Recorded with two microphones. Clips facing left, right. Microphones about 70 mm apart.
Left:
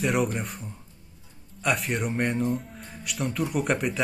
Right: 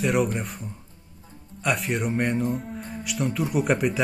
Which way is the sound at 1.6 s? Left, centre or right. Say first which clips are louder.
Right 1 dB; centre.